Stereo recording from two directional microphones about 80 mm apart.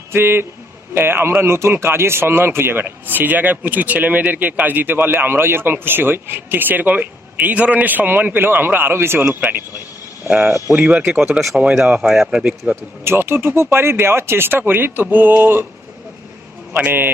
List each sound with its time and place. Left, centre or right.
0.1 s speech: right
11.3 s speech: centre
12.7 s speech: right
16.7 s speech: right